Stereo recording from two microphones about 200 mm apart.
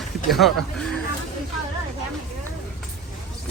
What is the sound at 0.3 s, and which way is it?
Speech, centre (ahead or behind).